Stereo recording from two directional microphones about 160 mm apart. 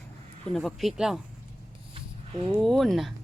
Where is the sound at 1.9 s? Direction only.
35° right (ahead or behind).